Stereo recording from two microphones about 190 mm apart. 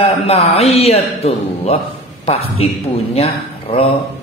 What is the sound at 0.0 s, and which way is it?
A man's voice, 35° left (ahead or behind).